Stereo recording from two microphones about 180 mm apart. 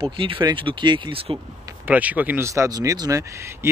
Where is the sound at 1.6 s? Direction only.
10° right (ahead or behind).